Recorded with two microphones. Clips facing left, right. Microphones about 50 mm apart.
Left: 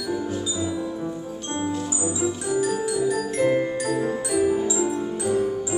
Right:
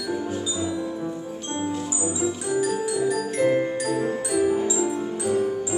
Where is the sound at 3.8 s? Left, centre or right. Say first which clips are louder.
Even; centre.